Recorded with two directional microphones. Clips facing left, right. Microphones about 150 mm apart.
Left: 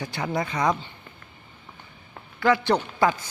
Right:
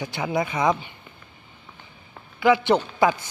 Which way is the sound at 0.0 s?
20° right (ahead or behind).